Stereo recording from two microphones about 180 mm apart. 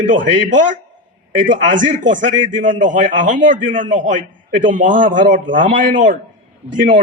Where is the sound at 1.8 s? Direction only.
45° right (ahead or behind).